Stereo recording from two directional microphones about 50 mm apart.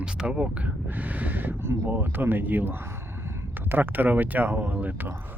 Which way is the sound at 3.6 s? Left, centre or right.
Right.